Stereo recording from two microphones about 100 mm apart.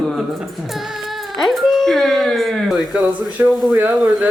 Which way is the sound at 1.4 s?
Centre (ahead or behind).